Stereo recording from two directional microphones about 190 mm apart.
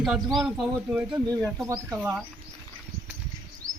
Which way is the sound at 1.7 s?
15° right (ahead or behind).